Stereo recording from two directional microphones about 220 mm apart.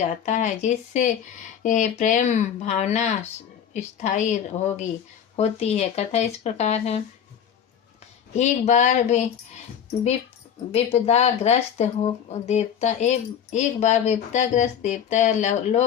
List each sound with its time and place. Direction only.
0.0 s speech: 35° left (ahead or behind)
8.4 s speech: 30° left (ahead or behind)
10.7 s speech: 25° left (ahead or behind)